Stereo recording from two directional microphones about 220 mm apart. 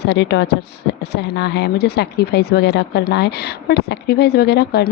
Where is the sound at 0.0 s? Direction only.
50° left (ahead or behind).